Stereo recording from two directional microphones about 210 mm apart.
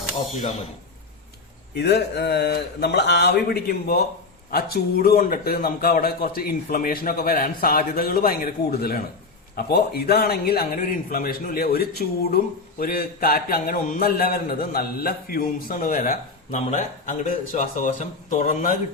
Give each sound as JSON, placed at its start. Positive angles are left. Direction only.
{"t": 1.7, "sound": "a man's voice", "side_deg": 50}